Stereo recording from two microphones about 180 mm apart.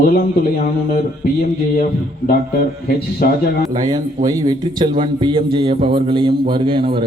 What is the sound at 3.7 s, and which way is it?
A man's voice, 20° right (ahead or behind).